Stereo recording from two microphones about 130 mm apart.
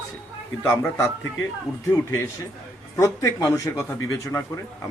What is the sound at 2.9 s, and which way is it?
A man's voice, 25° left (ahead or behind).